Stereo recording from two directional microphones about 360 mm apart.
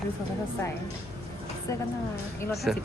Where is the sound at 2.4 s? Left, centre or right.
Centre.